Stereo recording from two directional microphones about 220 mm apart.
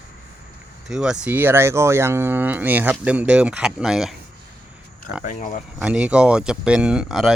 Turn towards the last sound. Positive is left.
turn(degrees=0)  # may be behind; listen again after turning